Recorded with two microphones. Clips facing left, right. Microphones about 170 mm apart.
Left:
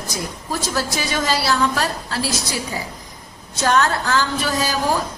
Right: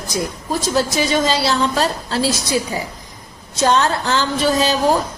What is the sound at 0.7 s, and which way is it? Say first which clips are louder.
A woman's voice: right 7 dB; 20° right (ahead or behind).